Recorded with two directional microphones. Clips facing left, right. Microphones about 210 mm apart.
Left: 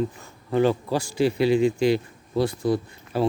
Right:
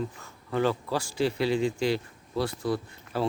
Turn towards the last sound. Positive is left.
turn(degrees=15)  # may be behind; listen again after turning